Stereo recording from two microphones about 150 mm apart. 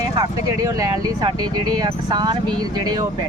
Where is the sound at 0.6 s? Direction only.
25° right (ahead or behind).